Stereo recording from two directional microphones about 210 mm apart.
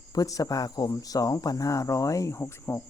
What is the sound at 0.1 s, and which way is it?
Speech, 15° left (ahead or behind).